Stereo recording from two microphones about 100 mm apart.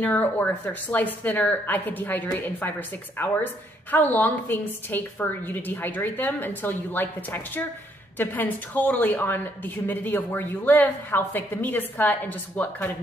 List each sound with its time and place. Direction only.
0.0 s a woman's voice: 15° left (ahead or behind)